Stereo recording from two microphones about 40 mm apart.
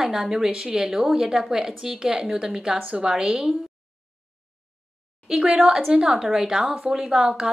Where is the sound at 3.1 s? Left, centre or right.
Centre.